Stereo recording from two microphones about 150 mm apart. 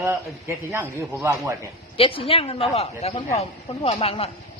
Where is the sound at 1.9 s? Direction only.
35° left (ahead or behind).